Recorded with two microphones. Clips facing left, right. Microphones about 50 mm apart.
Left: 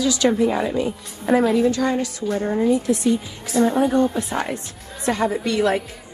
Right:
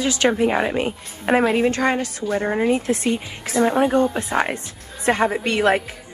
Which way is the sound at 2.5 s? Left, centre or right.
Right.